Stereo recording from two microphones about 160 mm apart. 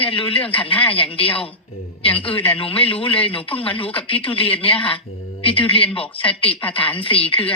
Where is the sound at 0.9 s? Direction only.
35° left (ahead or behind).